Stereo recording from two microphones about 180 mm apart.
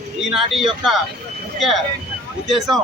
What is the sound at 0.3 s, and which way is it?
A man's voice, centre (ahead or behind).